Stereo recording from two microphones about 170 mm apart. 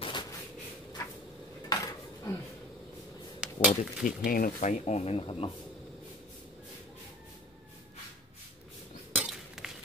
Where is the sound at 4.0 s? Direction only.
60° left (ahead or behind); by 5.5 s 35° left (ahead or behind).